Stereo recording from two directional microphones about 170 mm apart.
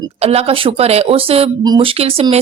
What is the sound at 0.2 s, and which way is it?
A woman's voice, 35° right (ahead or behind).